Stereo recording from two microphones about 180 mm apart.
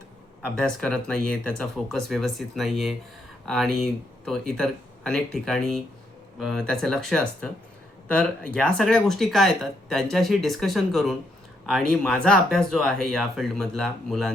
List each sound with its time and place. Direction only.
0.5 s speech: 5° left (ahead or behind)